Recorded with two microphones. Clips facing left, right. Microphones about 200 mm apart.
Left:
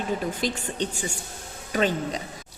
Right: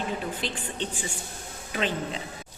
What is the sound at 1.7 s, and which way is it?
Speech, 40° left (ahead or behind).